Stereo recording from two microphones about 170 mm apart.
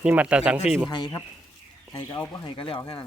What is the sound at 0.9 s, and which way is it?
Speech, 20° left (ahead or behind).